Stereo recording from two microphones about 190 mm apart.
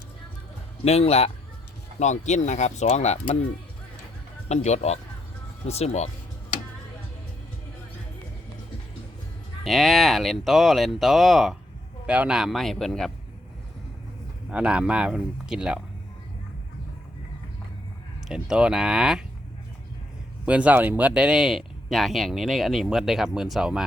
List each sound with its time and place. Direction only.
0.9 s speech: 35° left (ahead or behind)
4.4 s speech: 35° left (ahead or behind)
9.6 s speech: centre (ahead or behind)
14.5 s speech: 5° right (ahead or behind)
18.3 s speech: 5° right (ahead or behind)
20.4 s speech: 5° right (ahead or behind)